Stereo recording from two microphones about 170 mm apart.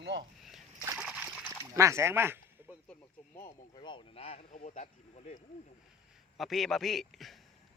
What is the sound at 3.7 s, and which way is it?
Speech, 25° left (ahead or behind).